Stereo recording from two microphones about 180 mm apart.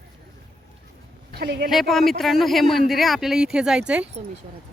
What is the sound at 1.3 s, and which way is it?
Speech, 60° right (ahead or behind).